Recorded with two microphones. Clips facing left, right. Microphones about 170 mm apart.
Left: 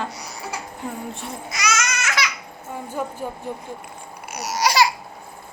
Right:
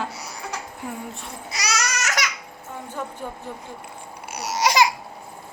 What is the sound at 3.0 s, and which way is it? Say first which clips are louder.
Speech: left 4 dB; 10° left (ahead or behind).